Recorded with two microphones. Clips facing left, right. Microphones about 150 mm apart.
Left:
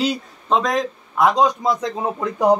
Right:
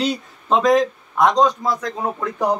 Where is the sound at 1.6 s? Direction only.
20° left (ahead or behind).